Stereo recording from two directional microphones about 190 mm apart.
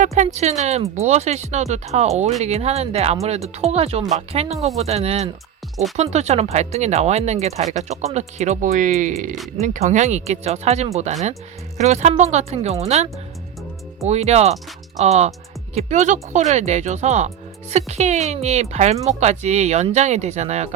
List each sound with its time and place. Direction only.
0.0 s speech: 40° right (ahead or behind)